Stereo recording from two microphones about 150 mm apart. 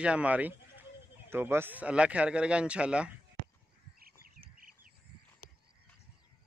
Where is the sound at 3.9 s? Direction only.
80° right.